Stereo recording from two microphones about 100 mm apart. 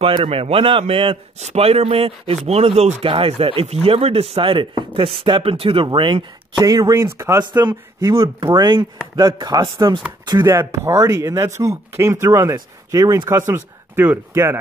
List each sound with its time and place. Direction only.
0.0 s speech: 70° right (ahead or behind)
6.6 s speech: 35° right (ahead or behind)
8.1 s speech: 55° right (ahead or behind)
10.5 s speech: 25° right (ahead or behind)